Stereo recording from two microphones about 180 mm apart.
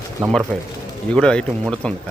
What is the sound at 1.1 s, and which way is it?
Speech, 5° left (ahead or behind).